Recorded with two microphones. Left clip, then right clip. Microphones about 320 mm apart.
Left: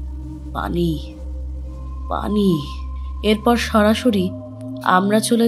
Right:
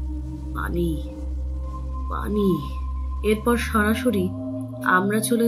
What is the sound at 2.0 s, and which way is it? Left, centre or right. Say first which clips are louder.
Speech: left 4 dB; left.